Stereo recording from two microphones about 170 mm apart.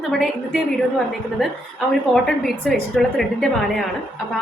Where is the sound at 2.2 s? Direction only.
Centre (ahead or behind).